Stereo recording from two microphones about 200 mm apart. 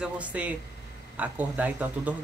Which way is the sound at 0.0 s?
5° right (ahead or behind).